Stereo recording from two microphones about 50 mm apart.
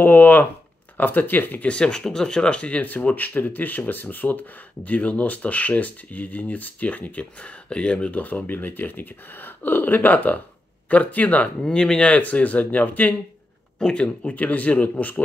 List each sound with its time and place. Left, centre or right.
0.0 s speech: left
1.7 s speech: centre
2.8 s speech: left
8.2 s speech: left
11.6 s speech: centre
12.1 s speech: left
13.7 s speech: centre
14.3 s speech: left